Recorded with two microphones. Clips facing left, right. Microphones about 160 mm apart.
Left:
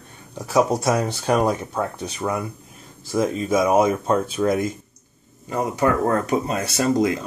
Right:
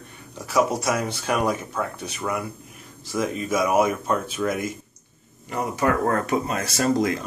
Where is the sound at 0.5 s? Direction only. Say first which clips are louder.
Left 3 dB; 30° left (ahead or behind).